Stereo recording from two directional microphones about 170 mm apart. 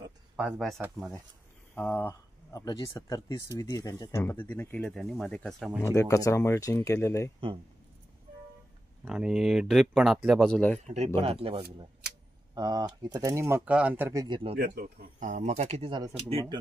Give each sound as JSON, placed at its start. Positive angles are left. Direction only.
{"t": 0.4, "sound": "speech", "side_deg": 0}
{"t": 1.8, "sound": "speech", "side_deg": 10}
{"t": 5.9, "sound": "speech", "side_deg": 20}
{"t": 9.0, "sound": "speech", "side_deg": -5}
{"t": 11.1, "sound": "speech", "side_deg": -35}
{"t": 12.5, "sound": "speech", "side_deg": -20}
{"t": 14.2, "sound": "speech", "side_deg": -25}
{"t": 14.5, "sound": "speech", "side_deg": -65}